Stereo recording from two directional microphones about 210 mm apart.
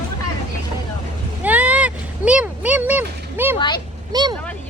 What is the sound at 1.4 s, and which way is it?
Vehicle, 5° right (ahead or behind).